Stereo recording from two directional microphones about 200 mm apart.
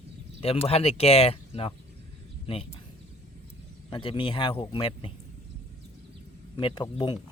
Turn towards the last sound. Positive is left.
turn(degrees=25)  # may be behind; listen again after turning